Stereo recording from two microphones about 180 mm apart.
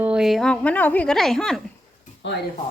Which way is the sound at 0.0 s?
5° right (ahead or behind).